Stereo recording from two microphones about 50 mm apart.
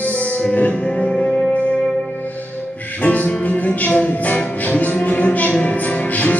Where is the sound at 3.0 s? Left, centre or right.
Left.